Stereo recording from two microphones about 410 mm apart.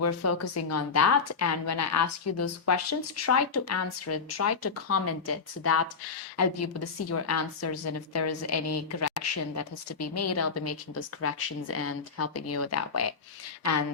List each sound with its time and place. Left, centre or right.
0.0 s a woman's voice: left